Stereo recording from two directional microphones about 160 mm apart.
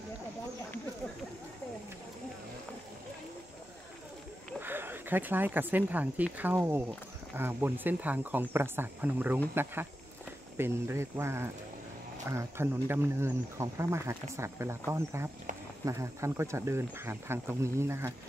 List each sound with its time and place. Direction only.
4.6 s speech: 15° right (ahead or behind)
10.6 s speech: 15° right (ahead or behind)